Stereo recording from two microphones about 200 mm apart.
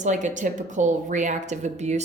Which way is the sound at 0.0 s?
35° right (ahead or behind).